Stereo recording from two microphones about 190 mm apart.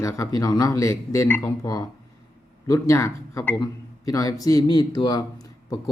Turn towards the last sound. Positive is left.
turn(degrees=20)  # may be behind; listen again after turning